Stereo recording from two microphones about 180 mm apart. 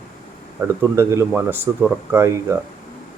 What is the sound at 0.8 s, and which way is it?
Speech, 15° right (ahead or behind).